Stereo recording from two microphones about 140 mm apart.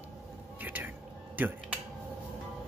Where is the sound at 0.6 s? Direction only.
15° right (ahead or behind).